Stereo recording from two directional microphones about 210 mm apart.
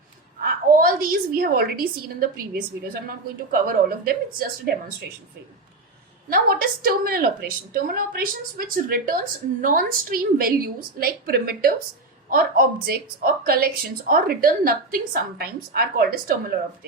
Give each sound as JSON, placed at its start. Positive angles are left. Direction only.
{"t": 0.4, "sound": "a woman's voice", "side_deg": -45}
{"t": 6.3, "sound": "a woman's voice", "side_deg": -45}